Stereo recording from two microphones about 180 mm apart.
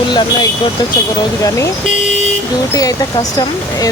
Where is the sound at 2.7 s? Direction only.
20° left (ahead or behind).